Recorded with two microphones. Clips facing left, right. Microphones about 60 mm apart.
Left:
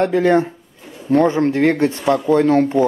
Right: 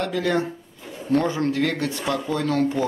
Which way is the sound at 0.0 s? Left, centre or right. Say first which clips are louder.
Left 8 dB; left.